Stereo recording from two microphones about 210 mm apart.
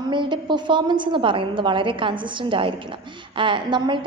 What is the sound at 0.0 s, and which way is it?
A woman's voice, 20° right (ahead or behind).